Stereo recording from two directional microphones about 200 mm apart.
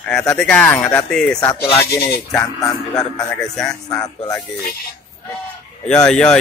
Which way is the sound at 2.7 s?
15° left (ahead or behind).